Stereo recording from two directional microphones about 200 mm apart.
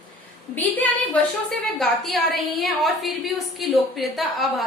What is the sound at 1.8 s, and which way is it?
A woman's voice, centre (ahead or behind).